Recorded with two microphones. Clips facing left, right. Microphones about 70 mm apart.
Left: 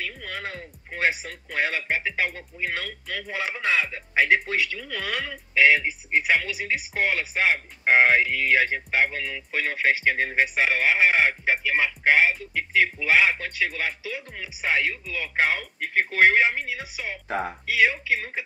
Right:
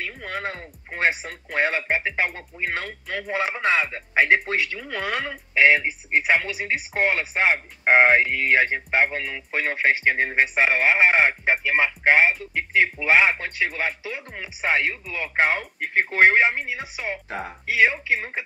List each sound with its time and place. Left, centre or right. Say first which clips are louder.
0.0 s speech: right 3 dB; right